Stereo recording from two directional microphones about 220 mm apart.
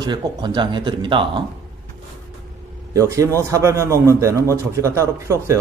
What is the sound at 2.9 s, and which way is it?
A man's voice, 15° right (ahead or behind).